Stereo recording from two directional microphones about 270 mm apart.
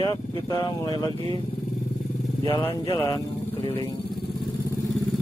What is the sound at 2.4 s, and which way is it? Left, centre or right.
Speech, centre.